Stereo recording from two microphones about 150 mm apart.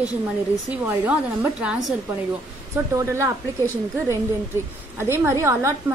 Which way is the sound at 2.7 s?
20° right (ahead or behind).